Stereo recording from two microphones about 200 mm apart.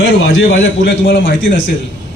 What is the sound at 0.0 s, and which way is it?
A man's voice, 75° left (ahead or behind).